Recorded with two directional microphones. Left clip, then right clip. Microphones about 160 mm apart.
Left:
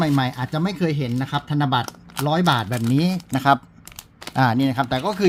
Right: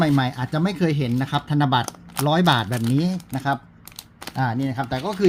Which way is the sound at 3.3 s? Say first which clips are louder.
Left 8 dB; 35° left (ahead or behind).